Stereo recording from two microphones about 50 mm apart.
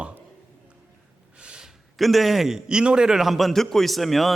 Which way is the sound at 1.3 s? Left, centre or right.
Centre.